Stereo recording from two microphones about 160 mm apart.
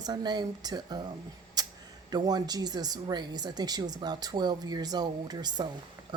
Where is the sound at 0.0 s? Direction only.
25° right (ahead or behind).